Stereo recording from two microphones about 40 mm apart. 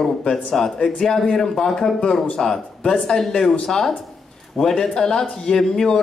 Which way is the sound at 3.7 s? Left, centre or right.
Centre.